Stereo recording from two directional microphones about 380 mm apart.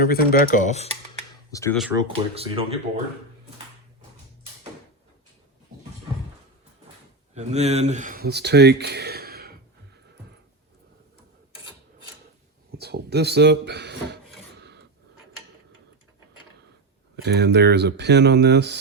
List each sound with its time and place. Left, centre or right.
0.0 s speech: left
1.5 s speech: centre
2.0 s speech: centre
7.3 s speech: centre
12.7 s speech: right
17.2 s speech: right